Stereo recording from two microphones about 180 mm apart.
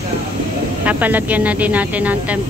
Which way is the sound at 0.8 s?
10° right (ahead or behind).